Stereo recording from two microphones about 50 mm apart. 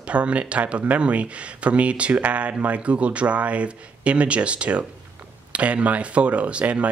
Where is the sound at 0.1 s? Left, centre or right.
Right.